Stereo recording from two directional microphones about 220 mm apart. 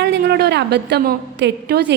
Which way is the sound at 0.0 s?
50° right (ahead or behind).